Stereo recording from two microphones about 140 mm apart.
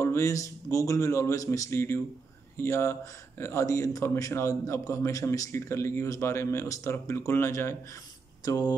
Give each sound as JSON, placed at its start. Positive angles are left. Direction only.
{"t": 0.0, "sound": "speech", "side_deg": 20}
{"t": 8.5, "sound": "speech", "side_deg": 30}